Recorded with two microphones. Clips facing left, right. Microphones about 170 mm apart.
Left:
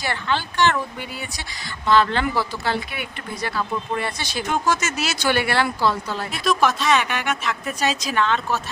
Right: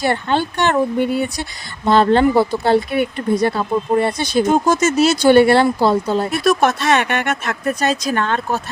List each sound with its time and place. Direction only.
0.1 s speech: 50° right (ahead or behind)
1.9 s speech: 35° right (ahead or behind)
2.3 s speech: 55° right (ahead or behind)
3.4 s speech: 30° right (ahead or behind)
4.4 s speech: 45° right (ahead or behind)
4.7 s speech: 30° right (ahead or behind)
6.4 s speech: 55° right (ahead or behind)